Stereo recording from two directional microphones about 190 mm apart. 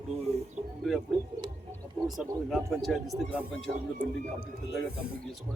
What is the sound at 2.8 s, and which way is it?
Speech, centre (ahead or behind).